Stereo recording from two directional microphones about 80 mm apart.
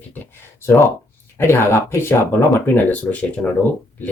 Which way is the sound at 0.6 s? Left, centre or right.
Left.